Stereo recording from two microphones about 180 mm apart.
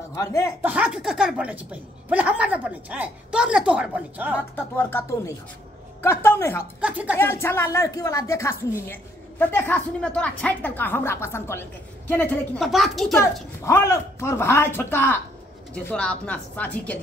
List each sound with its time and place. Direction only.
0.1 s speech: 15° left (ahead or behind)
0.6 s a woman's voice: 10° right (ahead or behind)
4.6 s a woman's voice: 10° left (ahead or behind)
6.8 s speech: 5° right (ahead or behind)
7.2 s a woman's voice: 15° left (ahead or behind)
13.2 s a woman's voice: 15° left (ahead or behind)